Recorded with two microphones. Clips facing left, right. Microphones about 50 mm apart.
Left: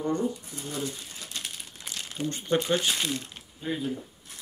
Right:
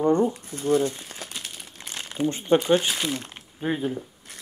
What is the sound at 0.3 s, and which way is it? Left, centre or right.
Speech, right.